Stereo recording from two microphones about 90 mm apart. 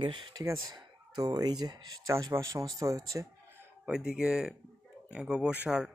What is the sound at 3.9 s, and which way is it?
Speech, 5° right (ahead or behind).